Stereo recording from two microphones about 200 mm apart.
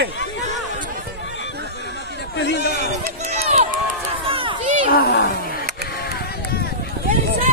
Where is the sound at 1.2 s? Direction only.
65° left (ahead or behind).